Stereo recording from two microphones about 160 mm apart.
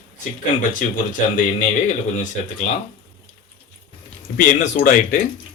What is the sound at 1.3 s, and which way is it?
Speech, 50° left (ahead or behind).